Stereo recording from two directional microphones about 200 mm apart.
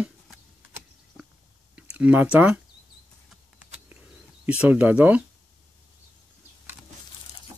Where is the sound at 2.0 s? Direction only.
5° right (ahead or behind).